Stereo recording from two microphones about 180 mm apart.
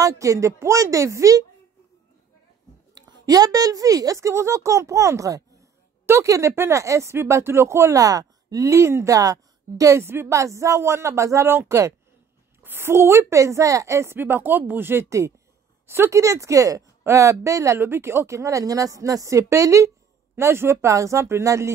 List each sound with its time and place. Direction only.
0.0 s a woman's voice: 15° right (ahead or behind)
2.9 s a woman's voice: 20° right (ahead or behind)